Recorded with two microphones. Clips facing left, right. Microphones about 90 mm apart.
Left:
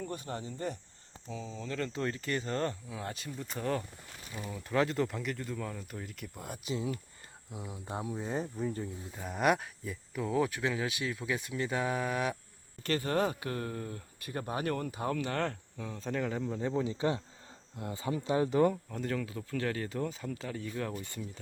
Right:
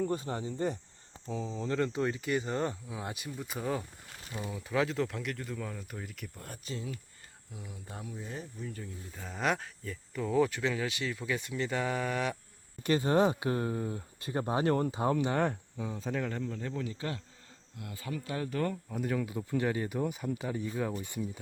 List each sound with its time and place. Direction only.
0.0 s speech: 30° right (ahead or behind)
1.8 s speech: 15° right (ahead or behind); by 7.8 s 20° left (ahead or behind)
8.1 s speech: 40° left (ahead or behind)
9.1 s speech: 10° left (ahead or behind)
12.8 s speech: 20° right (ahead or behind); by 16.4 s centre (ahead or behind)
16.4 s speech: 15° left (ahead or behind)
18.9 s speech: 10° right (ahead or behind)